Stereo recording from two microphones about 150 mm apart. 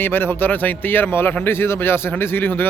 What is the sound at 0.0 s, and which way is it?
A man's voice, 15° left (ahead or behind).